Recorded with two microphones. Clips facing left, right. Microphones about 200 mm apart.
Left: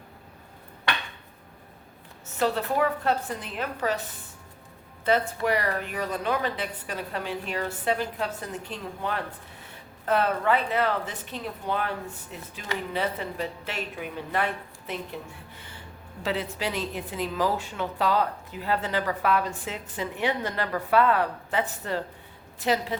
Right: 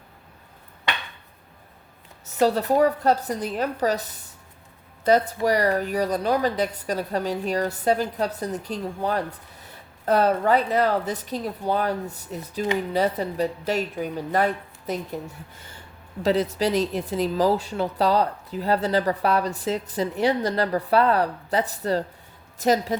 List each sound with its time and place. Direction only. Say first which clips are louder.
2.2 s a woman's voice: right 5 dB; 40° right (ahead or behind)